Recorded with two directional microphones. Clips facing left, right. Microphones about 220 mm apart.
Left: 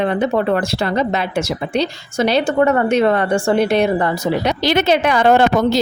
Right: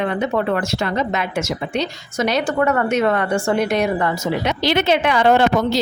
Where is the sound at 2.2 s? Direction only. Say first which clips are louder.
Left 4 dB; 30° left (ahead or behind).